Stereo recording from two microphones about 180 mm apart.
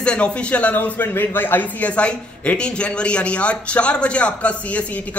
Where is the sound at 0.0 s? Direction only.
5° left (ahead or behind).